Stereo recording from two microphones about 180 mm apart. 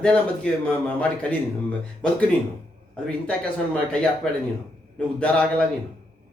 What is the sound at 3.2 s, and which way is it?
Speech, 5° left (ahead or behind).